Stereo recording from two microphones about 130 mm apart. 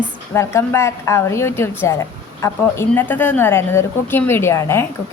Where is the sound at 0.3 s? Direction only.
20° left (ahead or behind).